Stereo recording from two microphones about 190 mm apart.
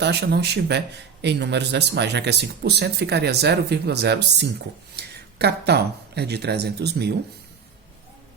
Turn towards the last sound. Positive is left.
turn(degrees=-60)  # may be behind; listen again after turning